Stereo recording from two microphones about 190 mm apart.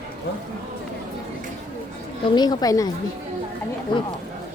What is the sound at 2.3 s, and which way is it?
Speech, 20° left (ahead or behind).